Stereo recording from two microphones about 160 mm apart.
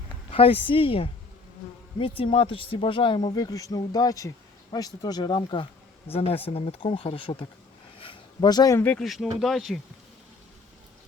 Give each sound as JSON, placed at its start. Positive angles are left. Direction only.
{"t": 0.3, "sound": "speech", "side_deg": 35}
{"t": 7.9, "sound": "a sound", "side_deg": 35}
{"t": 8.8, "sound": "speech", "side_deg": 5}